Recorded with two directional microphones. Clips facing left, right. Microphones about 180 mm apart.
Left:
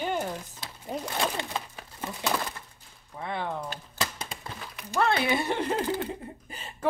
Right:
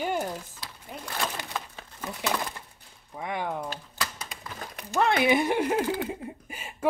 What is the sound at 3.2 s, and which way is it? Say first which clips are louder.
Speech: right 1 dB; 15° right (ahead or behind).